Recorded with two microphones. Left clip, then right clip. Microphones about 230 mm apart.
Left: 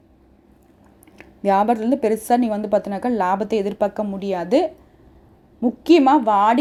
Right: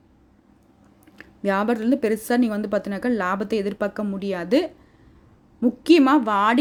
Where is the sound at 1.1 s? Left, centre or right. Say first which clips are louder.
Left 6 dB; centre.